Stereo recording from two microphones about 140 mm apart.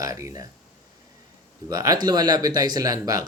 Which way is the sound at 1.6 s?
25° right (ahead or behind).